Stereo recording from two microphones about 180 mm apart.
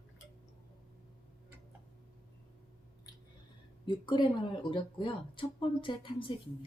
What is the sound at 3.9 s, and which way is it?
Speech, 25° left (ahead or behind).